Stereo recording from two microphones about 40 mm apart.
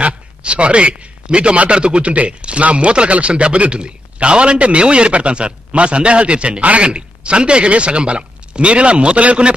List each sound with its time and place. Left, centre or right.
0.0 s a man's voice: right